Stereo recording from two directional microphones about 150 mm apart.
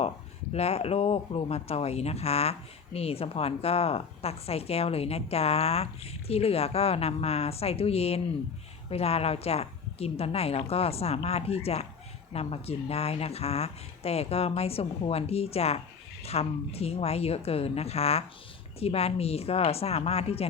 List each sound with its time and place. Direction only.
0.5 s speech: 45° left (ahead or behind)